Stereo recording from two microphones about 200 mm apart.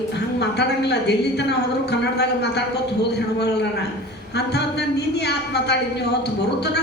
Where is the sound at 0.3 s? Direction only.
55° left (ahead or behind).